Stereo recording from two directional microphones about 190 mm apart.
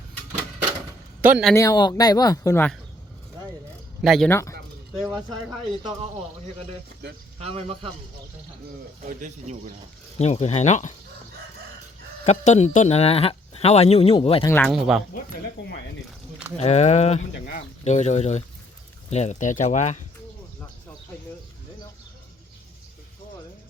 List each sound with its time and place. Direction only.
1.2 s speech: 5° right (ahead or behind)
1.5 s speech: 20° left (ahead or behind)
4.0 s speech: centre (ahead or behind)
4.3 s speech: 15° left (ahead or behind)
4.9 s speech: centre (ahead or behind)
7.3 s speech: 30° right (ahead or behind)
9.0 s speech: 40° right (ahead or behind)
10.2 s speech: 35° left (ahead or behind)
12.2 s speech: 35° left (ahead or behind)
14.4 s speech: 10° left (ahead or behind)
14.7 s speech: centre (ahead or behind)
16.6 s speech: 35° left (ahead or behind)